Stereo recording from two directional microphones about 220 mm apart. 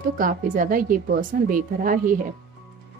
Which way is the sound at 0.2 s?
40° right (ahead or behind).